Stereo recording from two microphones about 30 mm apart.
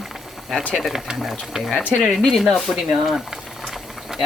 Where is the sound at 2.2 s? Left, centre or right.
Centre.